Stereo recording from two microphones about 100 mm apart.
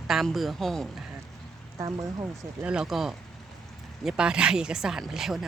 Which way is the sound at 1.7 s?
35° right (ahead or behind).